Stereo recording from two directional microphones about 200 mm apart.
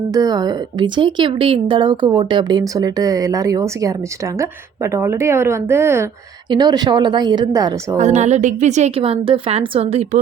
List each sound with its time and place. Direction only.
0.1 s speech: 20° right (ahead or behind)
7.9 s a woman's voice: 35° right (ahead or behind)